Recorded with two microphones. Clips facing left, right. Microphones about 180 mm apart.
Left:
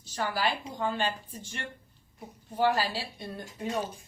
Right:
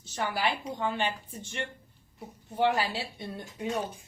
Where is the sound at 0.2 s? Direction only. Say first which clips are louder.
Even; 20° right (ahead or behind).